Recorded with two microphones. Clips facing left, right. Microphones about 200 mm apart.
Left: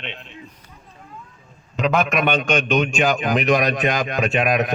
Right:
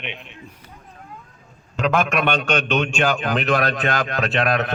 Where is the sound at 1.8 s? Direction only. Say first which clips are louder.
Left 1 dB; 5° left (ahead or behind).